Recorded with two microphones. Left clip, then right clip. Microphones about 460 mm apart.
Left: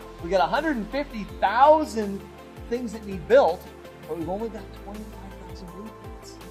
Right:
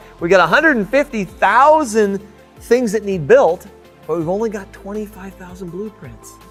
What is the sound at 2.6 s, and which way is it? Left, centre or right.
Speech, right.